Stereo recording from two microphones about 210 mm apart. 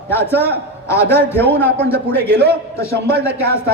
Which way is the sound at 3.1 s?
50° right (ahead or behind).